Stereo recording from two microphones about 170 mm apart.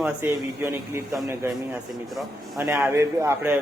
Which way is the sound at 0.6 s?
15° right (ahead or behind).